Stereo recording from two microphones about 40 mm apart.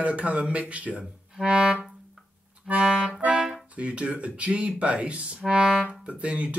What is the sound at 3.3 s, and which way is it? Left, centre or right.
Music, centre.